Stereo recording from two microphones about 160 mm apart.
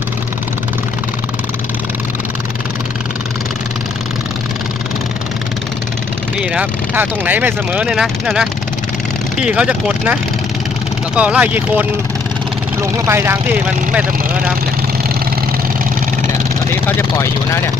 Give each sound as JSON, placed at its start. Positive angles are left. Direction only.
{"t": 6.5, "sound": "speech", "side_deg": -10}
{"t": 11.1, "sound": "speech", "side_deg": -10}
{"t": 12.9, "sound": "speech", "side_deg": -15}